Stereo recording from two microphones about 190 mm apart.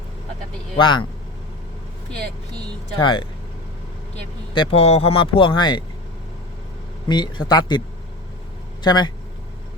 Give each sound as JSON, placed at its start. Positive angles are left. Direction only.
{"t": 0.8, "sound": "speech", "side_deg": 25}
{"t": 3.0, "sound": "speech", "side_deg": 25}
{"t": 7.1, "sound": "speech", "side_deg": 25}
{"t": 8.8, "sound": "speech", "side_deg": 20}